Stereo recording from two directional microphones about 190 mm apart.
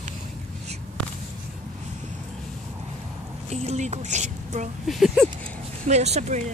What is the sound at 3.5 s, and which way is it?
Speech, 35° right (ahead or behind).